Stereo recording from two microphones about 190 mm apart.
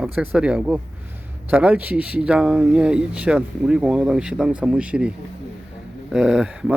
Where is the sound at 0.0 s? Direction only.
5° right (ahead or behind).